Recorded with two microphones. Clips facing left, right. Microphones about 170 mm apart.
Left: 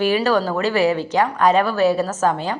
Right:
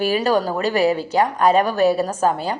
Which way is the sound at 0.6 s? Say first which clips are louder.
Even; 40° right (ahead or behind).